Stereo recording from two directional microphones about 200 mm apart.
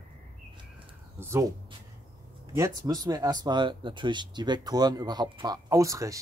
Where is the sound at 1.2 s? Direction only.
15° right (ahead or behind).